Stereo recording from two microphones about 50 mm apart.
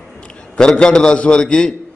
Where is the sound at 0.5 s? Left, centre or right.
Centre.